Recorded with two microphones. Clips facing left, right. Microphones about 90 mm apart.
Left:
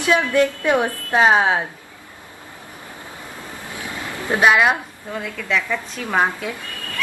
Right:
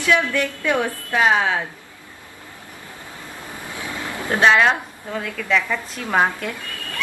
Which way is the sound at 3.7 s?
20° left (ahead or behind).